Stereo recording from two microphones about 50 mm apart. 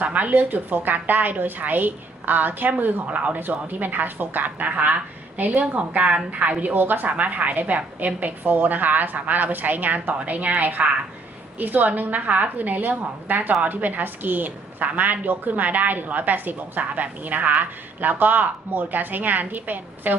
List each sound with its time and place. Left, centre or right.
0.0 s a woman's voice: right
3.4 s a woman's voice: right